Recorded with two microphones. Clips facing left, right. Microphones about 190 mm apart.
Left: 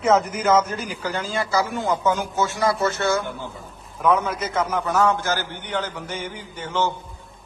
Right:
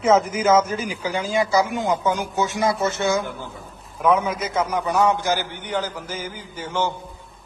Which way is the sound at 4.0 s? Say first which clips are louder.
Right 1 dB; centre (ahead or behind).